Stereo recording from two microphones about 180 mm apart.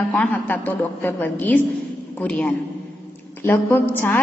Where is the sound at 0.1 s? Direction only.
10° left (ahead or behind).